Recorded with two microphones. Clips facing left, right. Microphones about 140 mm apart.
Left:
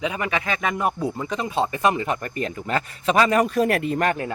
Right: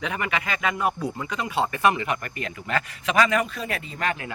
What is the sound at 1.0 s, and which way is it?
Speech, 30° left (ahead or behind).